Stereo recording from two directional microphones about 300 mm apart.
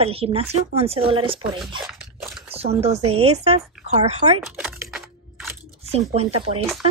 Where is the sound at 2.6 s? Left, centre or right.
Centre.